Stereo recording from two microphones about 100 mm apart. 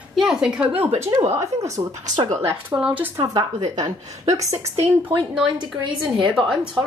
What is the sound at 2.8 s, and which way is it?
Speech, 10° right (ahead or behind).